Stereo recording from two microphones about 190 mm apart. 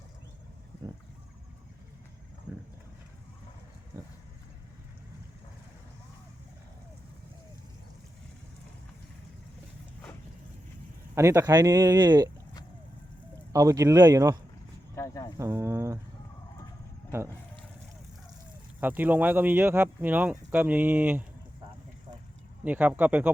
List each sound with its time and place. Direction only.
11.1 s speech: 15° right (ahead or behind)
13.5 s speech: 15° right (ahead or behind)
14.9 s a sound: 15° left (ahead or behind)
15.4 s a sound: 15° right (ahead or behind)
18.8 s speech: 10° right (ahead or behind)
22.6 s speech: 10° right (ahead or behind)